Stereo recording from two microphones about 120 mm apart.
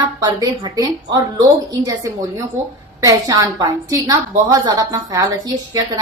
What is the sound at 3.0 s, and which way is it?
A woman's voice, 30° right (ahead or behind).